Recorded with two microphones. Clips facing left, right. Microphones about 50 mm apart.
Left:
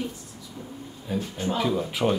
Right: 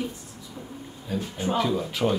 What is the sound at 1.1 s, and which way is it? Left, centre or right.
Speech, centre.